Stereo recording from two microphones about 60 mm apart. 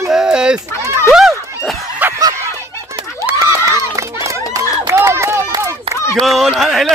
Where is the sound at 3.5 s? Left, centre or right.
Right.